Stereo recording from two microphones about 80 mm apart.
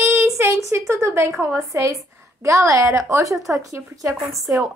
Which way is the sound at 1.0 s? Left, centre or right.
Right.